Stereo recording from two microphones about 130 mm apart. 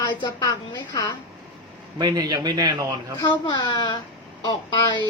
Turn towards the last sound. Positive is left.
turn(degrees=30)  # may be behind; listen again after turning